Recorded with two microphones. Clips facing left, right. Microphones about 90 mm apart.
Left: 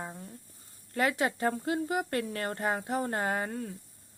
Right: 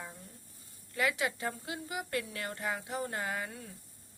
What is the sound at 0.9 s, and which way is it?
Speech, 45° left (ahead or behind).